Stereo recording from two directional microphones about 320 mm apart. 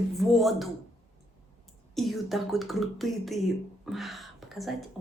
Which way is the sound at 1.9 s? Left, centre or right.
Centre.